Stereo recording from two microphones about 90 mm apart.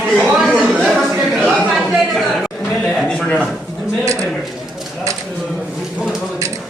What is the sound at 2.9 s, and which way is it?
Speech, 5° left (ahead or behind).